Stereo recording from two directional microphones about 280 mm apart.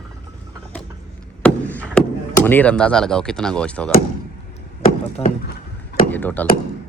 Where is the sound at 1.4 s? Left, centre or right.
Centre.